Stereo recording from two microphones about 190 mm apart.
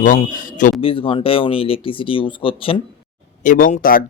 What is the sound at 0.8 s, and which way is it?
Speech, 30° left (ahead or behind).